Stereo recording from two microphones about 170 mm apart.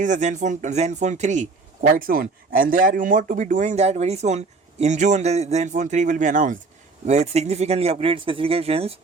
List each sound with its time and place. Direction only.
0.0 s speech: 45° right (ahead or behind)